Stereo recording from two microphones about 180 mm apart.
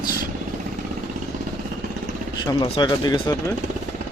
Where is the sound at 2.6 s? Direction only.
25° left (ahead or behind).